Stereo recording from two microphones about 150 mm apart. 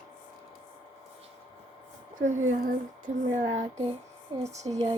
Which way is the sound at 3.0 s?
50° right (ahead or behind).